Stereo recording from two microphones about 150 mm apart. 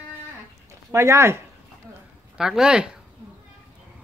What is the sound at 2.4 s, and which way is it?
Speech, 5° right (ahead or behind).